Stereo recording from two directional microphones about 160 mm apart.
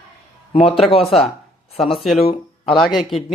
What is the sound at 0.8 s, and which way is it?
Speech, 35° left (ahead or behind).